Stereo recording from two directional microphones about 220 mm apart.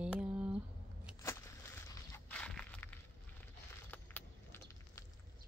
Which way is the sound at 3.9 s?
10° left (ahead or behind).